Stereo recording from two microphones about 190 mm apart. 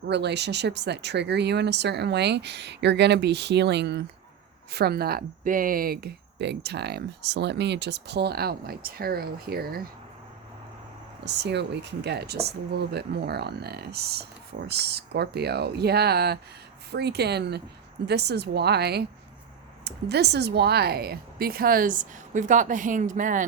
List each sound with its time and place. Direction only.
0.1 s speech: 65° right (ahead or behind)
11.3 s speech: 65° right (ahead or behind); by 23.5 s 45° right (ahead or behind)